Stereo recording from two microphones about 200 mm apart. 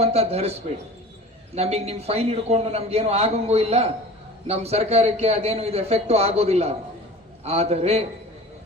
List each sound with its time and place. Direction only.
0.0 s a man's voice: 30° right (ahead or behind)
1.5 s a man's voice: 30° right (ahead or behind)